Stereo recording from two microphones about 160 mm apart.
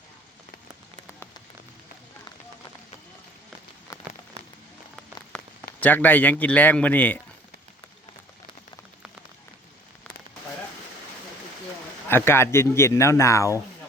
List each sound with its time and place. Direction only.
5.3 s rain on surface: 5° left (ahead or behind)
5.8 s speech: 10° left (ahead or behind)
12.0 s speech: 15° left (ahead or behind)